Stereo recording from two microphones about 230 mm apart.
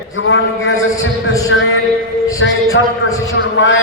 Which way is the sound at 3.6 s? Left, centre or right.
Left.